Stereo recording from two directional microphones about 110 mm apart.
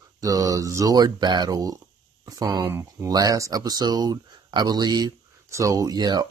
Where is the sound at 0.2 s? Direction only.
30° right (ahead or behind).